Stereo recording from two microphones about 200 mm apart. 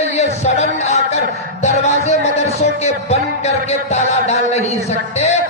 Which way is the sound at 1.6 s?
35° left (ahead or behind).